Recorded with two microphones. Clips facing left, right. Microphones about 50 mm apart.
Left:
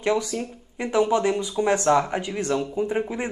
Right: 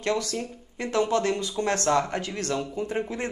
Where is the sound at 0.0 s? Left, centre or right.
Centre.